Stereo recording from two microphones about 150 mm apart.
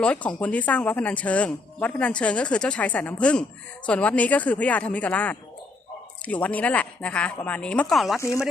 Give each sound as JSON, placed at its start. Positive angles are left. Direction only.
{"t": 0.0, "sound": "speech", "side_deg": 5}
{"t": 8.2, "sound": "speech", "side_deg": 20}